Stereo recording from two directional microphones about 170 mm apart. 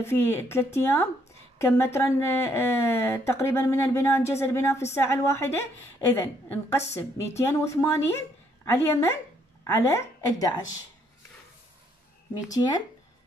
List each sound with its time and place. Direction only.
0.0 s a woman's voice: 15° left (ahead or behind)
12.4 s a woman's voice: 20° left (ahead or behind)